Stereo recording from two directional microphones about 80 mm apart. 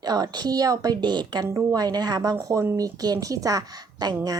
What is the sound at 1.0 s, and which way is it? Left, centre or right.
Speech, right.